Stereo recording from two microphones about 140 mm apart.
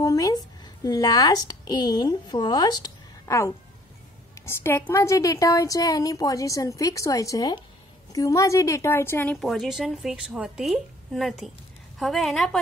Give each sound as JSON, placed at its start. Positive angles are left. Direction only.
{"t": 0.0, "sound": "a woman's voice", "side_deg": 25}
{"t": 9.4, "sound": "a woman's voice", "side_deg": 0}